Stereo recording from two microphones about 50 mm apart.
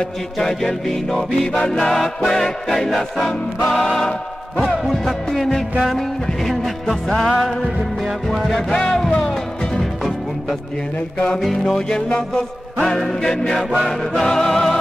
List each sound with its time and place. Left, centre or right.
0.4 s music: centre
11.6 s music: centre